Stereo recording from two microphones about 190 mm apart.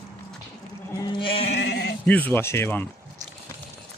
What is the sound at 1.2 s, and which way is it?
Music, 30° left (ahead or behind).